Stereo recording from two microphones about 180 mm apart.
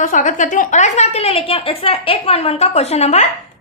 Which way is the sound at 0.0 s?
45° left (ahead or behind).